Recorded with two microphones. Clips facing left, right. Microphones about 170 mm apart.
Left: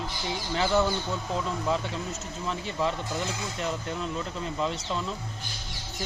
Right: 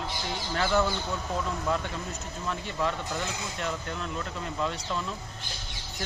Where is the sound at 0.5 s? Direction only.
15° left (ahead or behind).